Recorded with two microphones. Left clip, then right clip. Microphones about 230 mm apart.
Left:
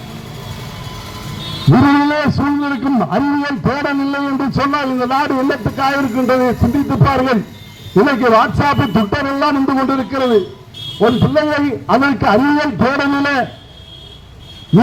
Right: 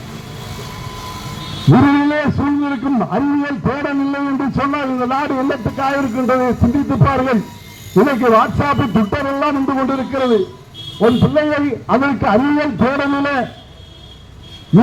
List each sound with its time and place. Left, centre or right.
1.7 s a man's voice: left